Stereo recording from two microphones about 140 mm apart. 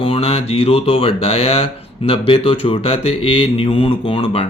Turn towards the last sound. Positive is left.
turn(degrees=45)  # may be behind; listen again after turning